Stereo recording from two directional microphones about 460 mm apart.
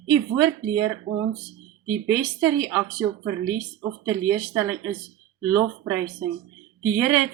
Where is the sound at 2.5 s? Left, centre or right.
Centre.